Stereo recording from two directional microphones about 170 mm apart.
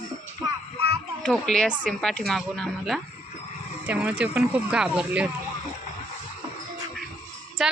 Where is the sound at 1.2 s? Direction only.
5° left (ahead or behind).